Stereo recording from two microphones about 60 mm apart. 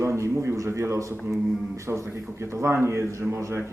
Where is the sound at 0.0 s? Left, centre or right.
Right.